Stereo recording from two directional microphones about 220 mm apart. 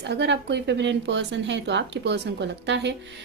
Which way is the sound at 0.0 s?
50° right (ahead or behind).